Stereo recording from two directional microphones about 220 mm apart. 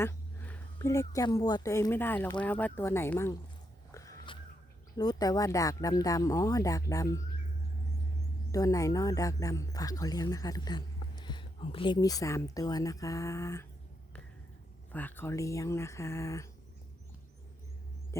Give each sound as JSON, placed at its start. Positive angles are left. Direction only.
{"t": 0.0, "sound": "a woman's voice", "side_deg": 10}
{"t": 3.9, "sound": "a sound", "side_deg": 15}
{"t": 4.9, "sound": "speech", "side_deg": 20}
{"t": 8.5, "sound": "speech", "side_deg": 15}
{"t": 14.9, "sound": "speech", "side_deg": 10}
{"t": 18.1, "sound": "music", "side_deg": 10}